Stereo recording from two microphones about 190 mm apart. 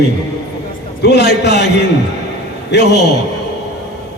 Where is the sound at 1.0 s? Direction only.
60° left (ahead or behind).